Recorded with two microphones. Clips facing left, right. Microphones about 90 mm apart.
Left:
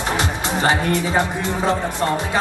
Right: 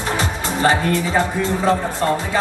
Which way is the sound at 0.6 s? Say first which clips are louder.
Right 2 dB; 20° left (ahead or behind).